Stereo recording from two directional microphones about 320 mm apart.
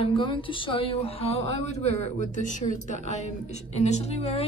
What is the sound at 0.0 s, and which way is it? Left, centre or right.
A woman's voice, centre.